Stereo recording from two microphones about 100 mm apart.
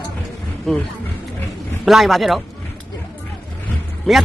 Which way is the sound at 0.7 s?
5° left (ahead or behind).